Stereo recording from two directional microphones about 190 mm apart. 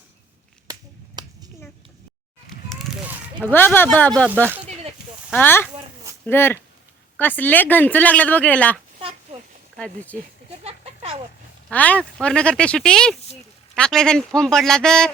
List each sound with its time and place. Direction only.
0.7 s finger snapping: 20° right (ahead or behind)
3.4 s speech: 10° left (ahead or behind)
5.3 s speech: 10° left (ahead or behind)
9.0 s a sound: 25° right (ahead or behind)
9.7 s speech: 5° left (ahead or behind)
10.6 s a sound: 30° right (ahead or behind)
11.7 s speech: 10° left (ahead or behind)